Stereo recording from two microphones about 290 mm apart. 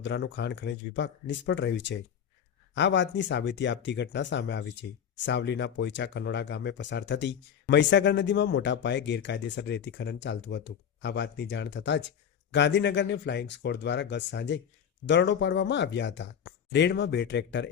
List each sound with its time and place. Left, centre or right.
0.0 s speech: left